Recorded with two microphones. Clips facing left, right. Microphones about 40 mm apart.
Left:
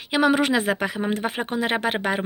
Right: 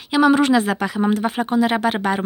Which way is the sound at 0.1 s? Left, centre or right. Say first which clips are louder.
Right 5 dB; centre.